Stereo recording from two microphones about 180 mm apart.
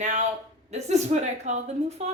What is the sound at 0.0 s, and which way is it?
A woman's voice, 40° right (ahead or behind).